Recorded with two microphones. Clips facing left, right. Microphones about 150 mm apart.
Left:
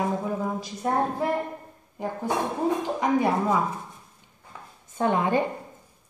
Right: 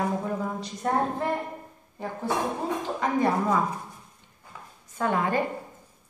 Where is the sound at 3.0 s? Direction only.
10° left (ahead or behind).